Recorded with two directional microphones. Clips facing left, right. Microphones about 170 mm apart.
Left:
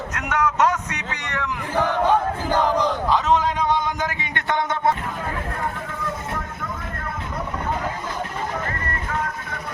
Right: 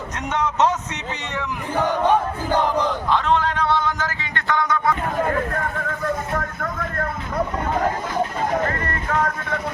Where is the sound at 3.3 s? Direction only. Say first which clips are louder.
Even; 10° left (ahead or behind).